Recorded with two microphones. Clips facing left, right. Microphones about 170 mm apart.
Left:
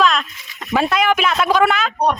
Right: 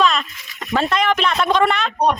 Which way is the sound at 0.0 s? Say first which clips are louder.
Left 1 dB; centre (ahead or behind).